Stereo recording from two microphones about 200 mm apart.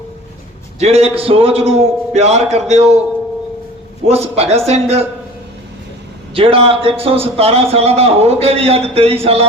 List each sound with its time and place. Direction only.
0.8 s a man's voice: 30° right (ahead or behind)
4.1 s a man's voice: 30° right (ahead or behind)
6.3 s a man's voice: 25° right (ahead or behind)